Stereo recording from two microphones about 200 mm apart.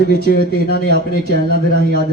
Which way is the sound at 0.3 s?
50° left (ahead or behind).